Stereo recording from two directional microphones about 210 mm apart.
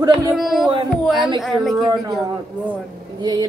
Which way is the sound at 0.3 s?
Centre (ahead or behind).